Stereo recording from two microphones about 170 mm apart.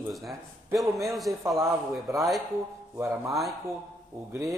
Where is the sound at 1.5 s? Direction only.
15° right (ahead or behind).